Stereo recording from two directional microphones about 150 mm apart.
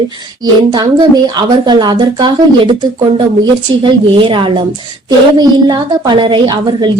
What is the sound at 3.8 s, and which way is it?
A woman's voice, 35° right (ahead or behind).